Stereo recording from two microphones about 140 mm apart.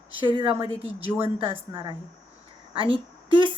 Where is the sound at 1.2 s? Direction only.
40° right (ahead or behind).